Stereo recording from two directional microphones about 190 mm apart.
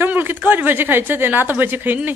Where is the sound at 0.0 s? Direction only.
10° right (ahead or behind).